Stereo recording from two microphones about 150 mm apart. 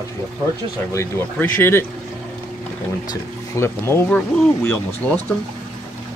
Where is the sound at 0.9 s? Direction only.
15° left (ahead or behind).